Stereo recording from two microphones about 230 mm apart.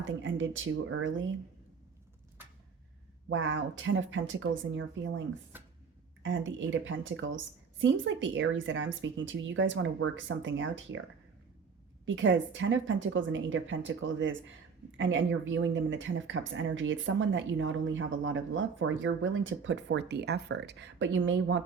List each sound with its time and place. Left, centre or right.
0.0 s speech: right
3.2 s speech: right
6.2 s a woman's voice: right
12.0 s speech: right